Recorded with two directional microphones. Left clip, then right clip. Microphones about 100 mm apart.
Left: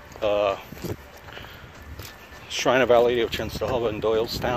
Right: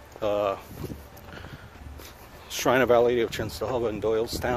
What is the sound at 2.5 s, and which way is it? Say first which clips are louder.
Speech: left 2 dB; 60° right (ahead or behind).